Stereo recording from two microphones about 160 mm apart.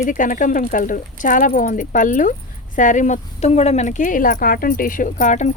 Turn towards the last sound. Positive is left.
turn(degrees=50)  # may be behind; listen again after turning